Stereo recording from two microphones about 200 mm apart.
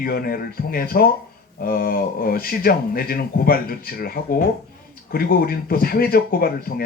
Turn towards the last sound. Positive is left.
turn(degrees=50)  # may be behind; listen again after turning